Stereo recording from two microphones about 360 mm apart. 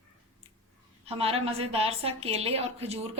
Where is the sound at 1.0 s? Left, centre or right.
Centre.